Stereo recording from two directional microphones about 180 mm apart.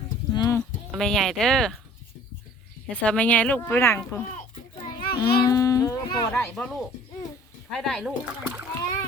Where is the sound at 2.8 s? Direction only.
5° left (ahead or behind).